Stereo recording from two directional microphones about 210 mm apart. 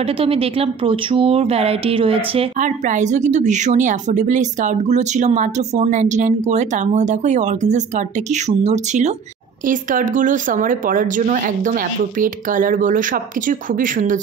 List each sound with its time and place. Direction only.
0.2 s speech: 25° right (ahead or behind)